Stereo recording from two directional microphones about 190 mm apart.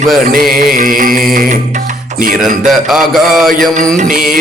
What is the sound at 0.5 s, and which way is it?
Music, 50° right (ahead or behind).